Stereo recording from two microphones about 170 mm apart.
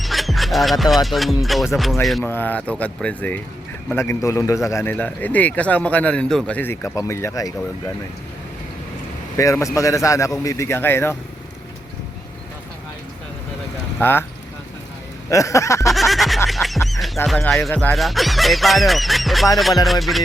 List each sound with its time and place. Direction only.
0.0 s music: centre (ahead or behind)
2.3 s a man's voice: 10° left (ahead or behind)
9.4 s a man's voice: 20° left (ahead or behind)
14.0 s a man's voice: 10° left (ahead or behind)
15.3 s speech: 20° left (ahead or behind)
15.9 s music: centre (ahead or behind)